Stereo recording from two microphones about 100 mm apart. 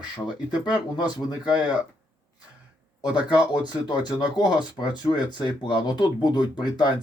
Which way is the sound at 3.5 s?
45° left (ahead or behind).